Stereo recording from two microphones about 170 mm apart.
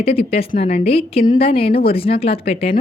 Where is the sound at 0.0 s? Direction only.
35° left (ahead or behind).